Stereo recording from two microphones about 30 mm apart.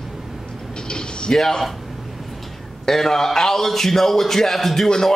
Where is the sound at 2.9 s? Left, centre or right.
Centre.